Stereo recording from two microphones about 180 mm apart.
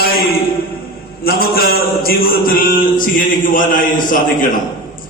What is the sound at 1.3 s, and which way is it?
A man's voice, 55° left (ahead or behind).